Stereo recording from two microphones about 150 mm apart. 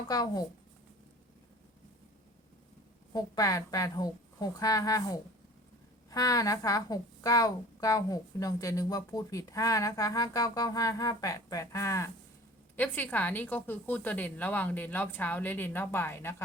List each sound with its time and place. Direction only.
0.0 s a woman's voice: 25° left (ahead or behind)
3.1 s a woman's voice: 25° left (ahead or behind)